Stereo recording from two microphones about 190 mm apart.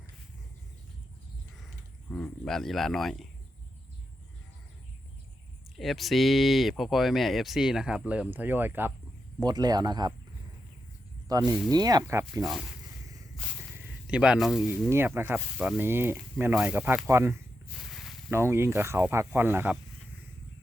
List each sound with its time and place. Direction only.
2.0 s speech: 5° left (ahead or behind)
5.7 s speech: centre (ahead or behind)
9.4 s speech: 20° right (ahead or behind)
11.3 s speech: 20° right (ahead or behind)
12.4 s speech: centre (ahead or behind)
13.3 s a sound: 5° left (ahead or behind)
13.8 s speech: 5° right (ahead or behind)
14.8 s speech: 10° right (ahead or behind)